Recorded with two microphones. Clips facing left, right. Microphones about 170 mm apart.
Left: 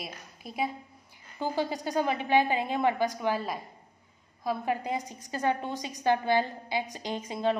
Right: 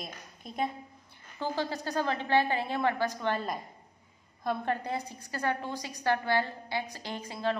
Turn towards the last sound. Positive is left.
turn(degrees=20)  # may be behind; listen again after turning